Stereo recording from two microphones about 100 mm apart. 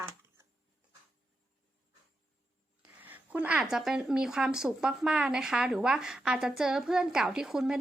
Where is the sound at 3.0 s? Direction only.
15° right (ahead or behind).